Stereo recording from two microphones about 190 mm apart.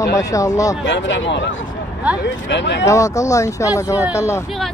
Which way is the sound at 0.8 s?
70° left (ahead or behind).